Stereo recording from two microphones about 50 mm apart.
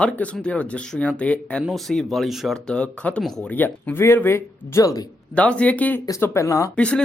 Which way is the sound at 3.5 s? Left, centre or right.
Left.